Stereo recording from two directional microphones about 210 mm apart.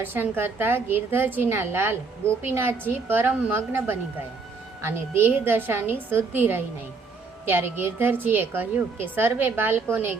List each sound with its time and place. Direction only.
0.0 s a woman's voice: 10° right (ahead or behind)